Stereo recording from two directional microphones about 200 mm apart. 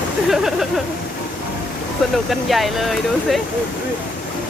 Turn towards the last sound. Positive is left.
turn(degrees=0)  # may be behind; listen again after turning